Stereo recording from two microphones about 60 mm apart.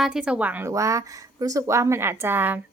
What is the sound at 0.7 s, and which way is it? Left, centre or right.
Speech, right.